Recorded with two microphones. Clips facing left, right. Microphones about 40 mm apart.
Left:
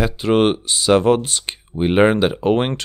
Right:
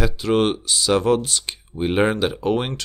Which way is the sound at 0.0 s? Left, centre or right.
Left.